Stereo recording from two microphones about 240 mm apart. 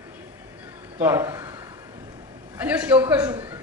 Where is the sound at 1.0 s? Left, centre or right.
Centre.